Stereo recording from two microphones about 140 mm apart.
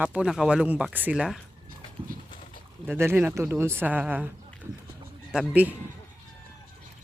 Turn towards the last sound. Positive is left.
turn(degrees=-10)  # may be behind; listen again after turning